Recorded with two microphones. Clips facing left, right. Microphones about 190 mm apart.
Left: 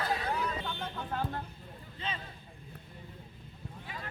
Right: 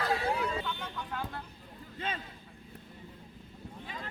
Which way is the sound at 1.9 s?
50° right (ahead or behind).